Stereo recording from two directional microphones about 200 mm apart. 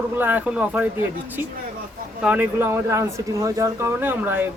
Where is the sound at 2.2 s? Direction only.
10° right (ahead or behind).